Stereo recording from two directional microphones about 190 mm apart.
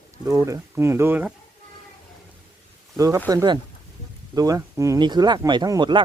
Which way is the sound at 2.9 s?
15° right (ahead or behind).